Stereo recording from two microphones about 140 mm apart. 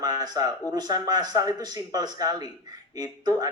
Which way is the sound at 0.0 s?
30° right (ahead or behind).